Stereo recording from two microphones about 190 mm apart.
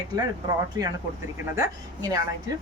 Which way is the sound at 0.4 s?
20° right (ahead or behind).